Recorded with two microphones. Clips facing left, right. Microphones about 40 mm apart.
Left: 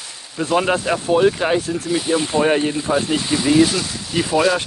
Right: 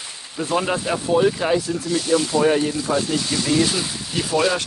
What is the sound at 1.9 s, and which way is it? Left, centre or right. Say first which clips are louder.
Speech: left 1 dB; left.